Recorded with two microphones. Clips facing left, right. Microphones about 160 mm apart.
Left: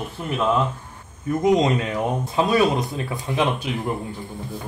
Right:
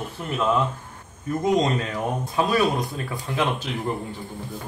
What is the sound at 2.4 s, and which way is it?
Speech, 20° left (ahead or behind).